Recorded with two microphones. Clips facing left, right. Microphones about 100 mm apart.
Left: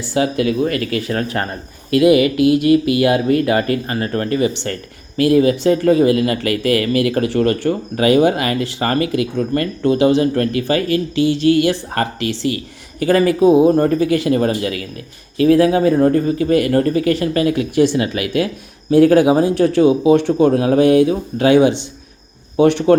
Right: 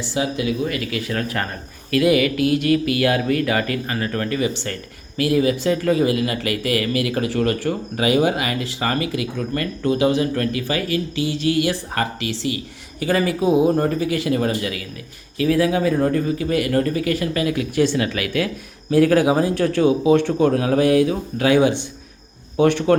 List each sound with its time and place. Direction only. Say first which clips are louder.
0.1 s speech: left 6 dB; 55° left (ahead or behind); by 1.5 s 30° left (ahead or behind)
1.9 s speech: left 5 dB; 20° left (ahead or behind)
13.0 s speech: left 7 dB; 45° left (ahead or behind)
17.7 s speech: left 3 dB; 20° left (ahead or behind)
20.5 s speech: left 5 dB; 30° left (ahead or behind)